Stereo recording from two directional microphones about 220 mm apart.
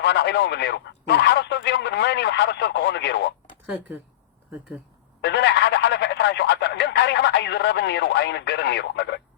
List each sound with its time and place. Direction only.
0.0 s speech: 50° left (ahead or behind)
5.2 s speech: 50° left (ahead or behind)